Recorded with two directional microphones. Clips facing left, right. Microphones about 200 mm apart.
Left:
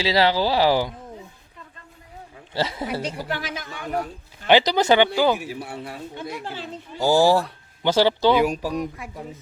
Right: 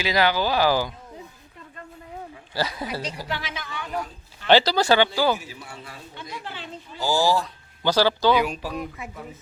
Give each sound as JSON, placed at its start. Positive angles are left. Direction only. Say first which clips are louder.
{"t": 0.0, "sound": "speech", "louder": "left 2 dB", "side_deg": 30}
{"t": 2.6, "sound": "speech", "louder": "left 2 dB", "side_deg": 25}
{"t": 2.8, "sound": "a woman's voice", "louder": "left 3 dB", "side_deg": 60}
{"t": 4.4, "sound": "speech", "louder": "left 1 dB", "side_deg": 15}
{"t": 5.4, "sound": "a child's voice", "louder": "left 8 dB", "side_deg": 60}
{"t": 7.8, "sound": "speech", "louder": "left 2 dB", "side_deg": 25}
{"t": 8.7, "sound": "speech", "louder": "left 4 dB", "side_deg": -5}